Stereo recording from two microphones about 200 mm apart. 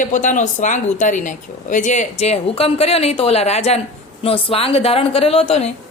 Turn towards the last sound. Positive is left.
turn(degrees=30)  # may be behind; listen again after turning